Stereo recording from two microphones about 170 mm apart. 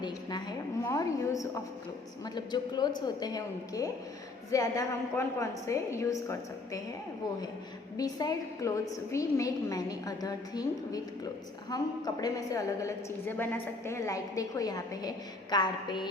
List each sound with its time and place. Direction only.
0.0 s a woman's voice: 25° left (ahead or behind)
7.9 s a woman's voice: 20° left (ahead or behind)